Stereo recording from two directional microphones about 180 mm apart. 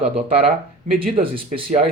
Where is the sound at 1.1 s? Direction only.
30° right (ahead or behind).